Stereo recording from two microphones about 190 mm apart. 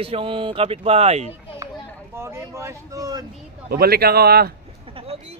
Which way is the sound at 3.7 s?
55° right (ahead or behind).